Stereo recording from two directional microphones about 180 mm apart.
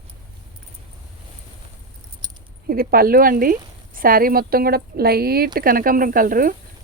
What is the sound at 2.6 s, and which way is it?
A woman's voice, 55° right (ahead or behind).